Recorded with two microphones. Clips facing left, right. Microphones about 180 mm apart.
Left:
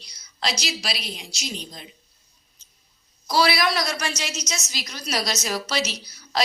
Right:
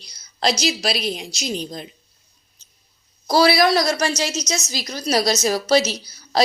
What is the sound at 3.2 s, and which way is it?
A woman's voice, 40° right (ahead or behind).